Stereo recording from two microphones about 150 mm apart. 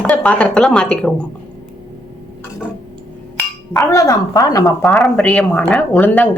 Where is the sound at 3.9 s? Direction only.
20° left (ahead or behind).